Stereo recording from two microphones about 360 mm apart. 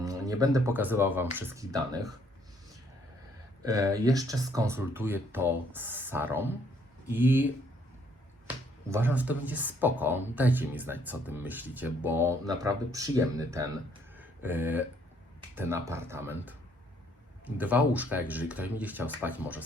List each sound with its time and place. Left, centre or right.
0.0 s speech: centre
3.6 s speech: centre
8.4 s speech: centre
14.2 s a sound: centre
15.5 s speech: centre